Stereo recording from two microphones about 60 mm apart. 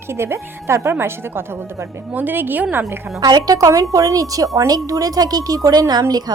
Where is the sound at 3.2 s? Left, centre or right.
Right.